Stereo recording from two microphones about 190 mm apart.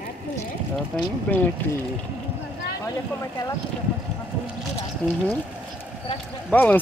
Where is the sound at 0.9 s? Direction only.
5° left (ahead or behind).